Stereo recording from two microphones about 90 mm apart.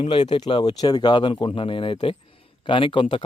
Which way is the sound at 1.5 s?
75° left (ahead or behind).